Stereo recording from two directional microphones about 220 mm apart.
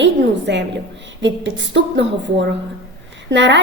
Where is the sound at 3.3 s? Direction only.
55° right (ahead or behind).